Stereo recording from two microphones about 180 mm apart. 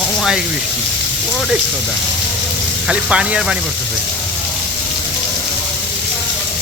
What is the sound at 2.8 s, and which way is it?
Speech, 5° right (ahead or behind).